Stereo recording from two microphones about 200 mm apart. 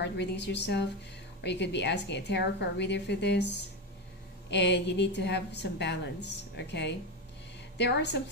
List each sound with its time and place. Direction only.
0.0 s a woman's voice: 60° left (ahead or behind)
4.5 s a woman's voice: 60° left (ahead or behind)